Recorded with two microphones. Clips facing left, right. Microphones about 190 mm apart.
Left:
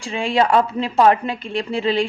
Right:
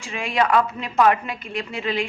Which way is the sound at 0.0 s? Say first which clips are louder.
Left 4 dB; 30° left (ahead or behind).